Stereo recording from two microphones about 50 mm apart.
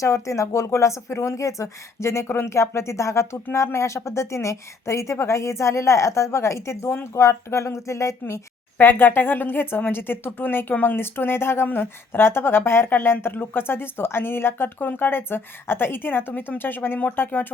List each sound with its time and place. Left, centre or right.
0.0 s a woman's voice: left
8.8 s a woman's voice: left